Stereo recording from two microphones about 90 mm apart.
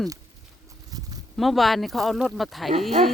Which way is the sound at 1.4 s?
Centre (ahead or behind).